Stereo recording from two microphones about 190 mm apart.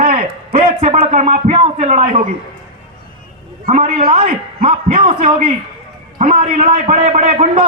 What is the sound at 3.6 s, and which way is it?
A man's voice, 35° right (ahead or behind).